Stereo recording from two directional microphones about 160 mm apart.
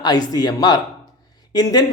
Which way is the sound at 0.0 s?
25° left (ahead or behind).